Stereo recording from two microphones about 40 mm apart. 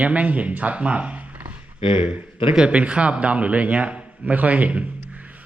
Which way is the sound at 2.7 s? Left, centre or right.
Right.